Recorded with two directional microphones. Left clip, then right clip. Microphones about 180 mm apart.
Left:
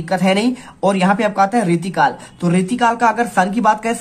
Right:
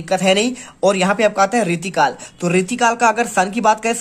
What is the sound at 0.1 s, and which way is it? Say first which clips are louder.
Speech: right 1 dB; 25° right (ahead or behind).